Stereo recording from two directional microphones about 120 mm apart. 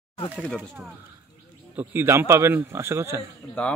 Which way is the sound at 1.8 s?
15° right (ahead or behind).